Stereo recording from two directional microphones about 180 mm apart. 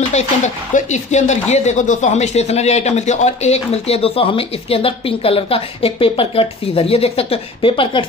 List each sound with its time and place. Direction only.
0.1 s a man's voice: 40° left (ahead or behind)